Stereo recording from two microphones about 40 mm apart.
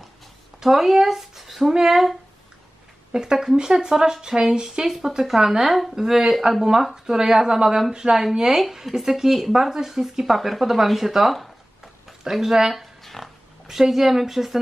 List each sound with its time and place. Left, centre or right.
0.6 s speech: centre
3.1 s speech: centre
13.0 s music: centre
13.7 s speech: centre